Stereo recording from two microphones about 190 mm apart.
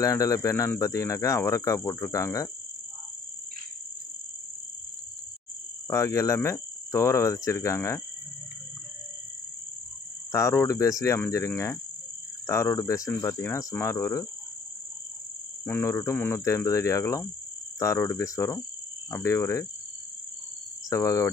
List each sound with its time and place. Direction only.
0.0 s speech: 15° left (ahead or behind)
5.9 s speech: 15° left (ahead or behind)
10.3 s speech: 15° left (ahead or behind)
15.6 s speech: 10° left (ahead or behind)
20.9 s speech: 15° left (ahead or behind)